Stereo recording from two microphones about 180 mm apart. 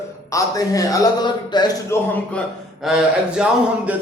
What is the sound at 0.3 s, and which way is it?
A man's voice, 20° left (ahead or behind).